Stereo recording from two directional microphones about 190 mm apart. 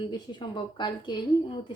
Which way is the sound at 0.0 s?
25° left (ahead or behind).